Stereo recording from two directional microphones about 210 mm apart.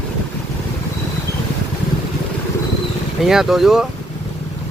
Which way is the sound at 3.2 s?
Centre (ahead or behind).